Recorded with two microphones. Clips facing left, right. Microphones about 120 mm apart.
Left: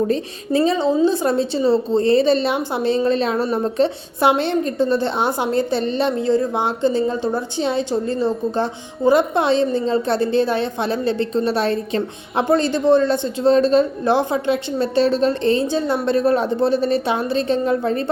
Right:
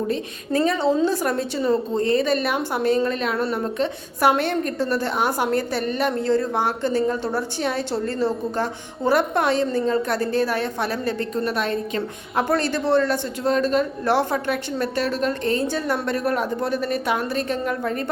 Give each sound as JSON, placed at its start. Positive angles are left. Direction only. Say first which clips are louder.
{"t": 0.5, "sound": "a woman's voice", "louder": "left 3 dB", "side_deg": 20}